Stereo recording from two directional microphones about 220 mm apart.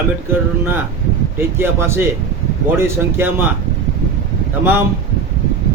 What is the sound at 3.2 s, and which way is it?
Speech, 10° right (ahead or behind).